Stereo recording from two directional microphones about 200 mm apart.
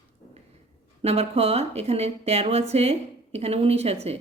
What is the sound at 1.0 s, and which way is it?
Speech, 30° right (ahead or behind).